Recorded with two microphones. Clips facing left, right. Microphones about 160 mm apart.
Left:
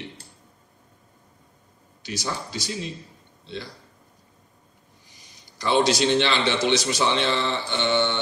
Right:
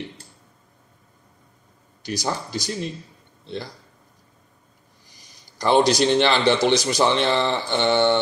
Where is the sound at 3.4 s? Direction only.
50° right (ahead or behind).